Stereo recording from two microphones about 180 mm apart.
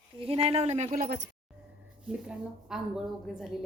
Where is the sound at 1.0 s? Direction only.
60° right (ahead or behind).